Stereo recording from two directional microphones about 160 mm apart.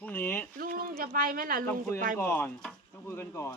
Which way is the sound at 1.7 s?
15° left (ahead or behind).